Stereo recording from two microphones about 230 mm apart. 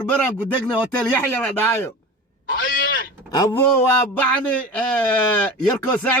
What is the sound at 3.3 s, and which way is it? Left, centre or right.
A man's voice, centre.